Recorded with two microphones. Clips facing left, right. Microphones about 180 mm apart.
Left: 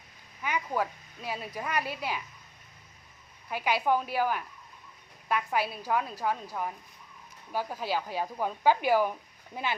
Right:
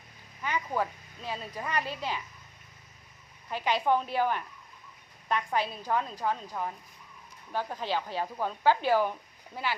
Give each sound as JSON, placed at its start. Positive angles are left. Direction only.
{"t": 0.4, "sound": "speech", "side_deg": 10}
{"t": 3.5, "sound": "speech", "side_deg": 10}